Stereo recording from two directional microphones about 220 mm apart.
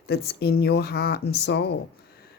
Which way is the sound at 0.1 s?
45° left (ahead or behind).